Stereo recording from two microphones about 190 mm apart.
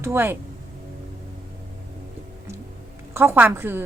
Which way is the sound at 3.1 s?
10° right (ahead or behind).